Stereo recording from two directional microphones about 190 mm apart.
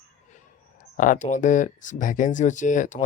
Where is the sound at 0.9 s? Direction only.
45° left (ahead or behind).